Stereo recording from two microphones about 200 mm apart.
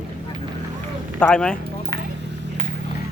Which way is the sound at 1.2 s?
5° left (ahead or behind).